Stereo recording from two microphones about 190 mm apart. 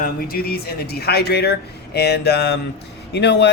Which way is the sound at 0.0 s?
50° left (ahead or behind).